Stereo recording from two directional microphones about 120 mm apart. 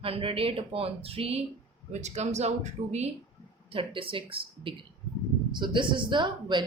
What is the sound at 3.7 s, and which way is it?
Speech, 50° right (ahead or behind).